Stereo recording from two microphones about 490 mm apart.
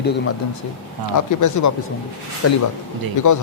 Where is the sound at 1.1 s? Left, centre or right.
Left.